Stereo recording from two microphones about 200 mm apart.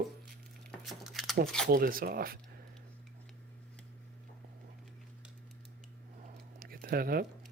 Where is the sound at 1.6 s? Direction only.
45° right (ahead or behind).